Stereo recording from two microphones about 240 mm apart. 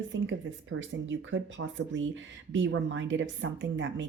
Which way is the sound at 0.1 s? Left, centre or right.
Right.